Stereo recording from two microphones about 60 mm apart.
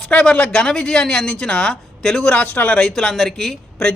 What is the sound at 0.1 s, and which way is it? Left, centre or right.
Speech, centre.